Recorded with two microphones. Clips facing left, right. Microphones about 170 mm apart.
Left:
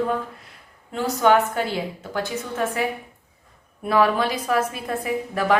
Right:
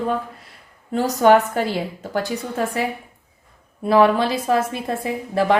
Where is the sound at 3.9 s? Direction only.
30° right (ahead or behind).